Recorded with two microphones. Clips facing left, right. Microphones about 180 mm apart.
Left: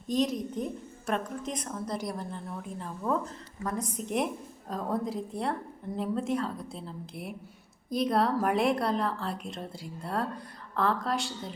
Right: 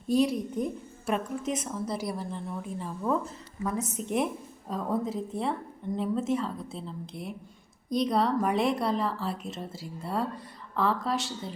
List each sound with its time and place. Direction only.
0.1 s a woman's voice: 10° right (ahead or behind)